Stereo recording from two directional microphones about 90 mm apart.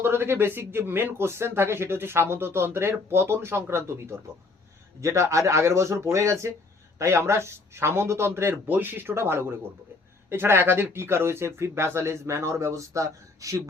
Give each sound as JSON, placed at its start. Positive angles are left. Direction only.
{"t": 0.0, "sound": "speech", "side_deg": -25}